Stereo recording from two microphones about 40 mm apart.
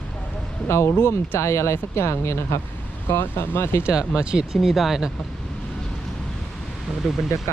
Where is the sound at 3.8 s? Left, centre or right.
Right.